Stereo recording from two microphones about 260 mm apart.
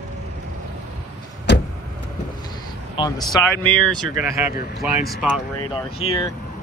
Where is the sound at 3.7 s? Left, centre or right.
Centre.